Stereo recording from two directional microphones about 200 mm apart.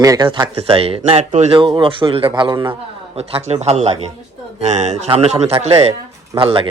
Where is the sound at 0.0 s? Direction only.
20° right (ahead or behind).